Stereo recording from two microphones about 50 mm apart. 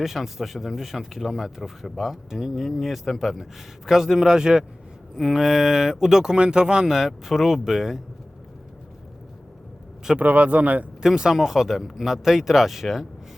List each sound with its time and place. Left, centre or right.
0.0 s speech: centre
10.2 s speech: right
11.0 s speech: centre